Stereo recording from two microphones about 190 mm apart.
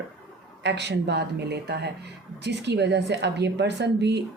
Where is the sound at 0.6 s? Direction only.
65° right (ahead or behind).